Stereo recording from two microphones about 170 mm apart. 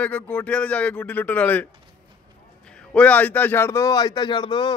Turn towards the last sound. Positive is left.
turn(degrees=25)  # may be behind; listen again after turning